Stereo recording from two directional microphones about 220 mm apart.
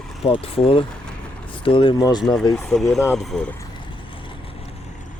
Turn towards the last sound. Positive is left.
turn(degrees=0)  # may be behind; listen again after turning